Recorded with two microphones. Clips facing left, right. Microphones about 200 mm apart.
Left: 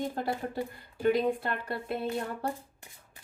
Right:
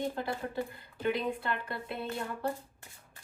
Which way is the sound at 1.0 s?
45° left (ahead or behind).